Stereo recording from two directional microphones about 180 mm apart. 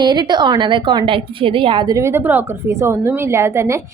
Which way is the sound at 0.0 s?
25° right (ahead or behind).